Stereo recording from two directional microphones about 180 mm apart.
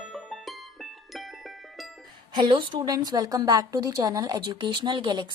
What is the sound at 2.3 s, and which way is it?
A woman's voice, 25° right (ahead or behind).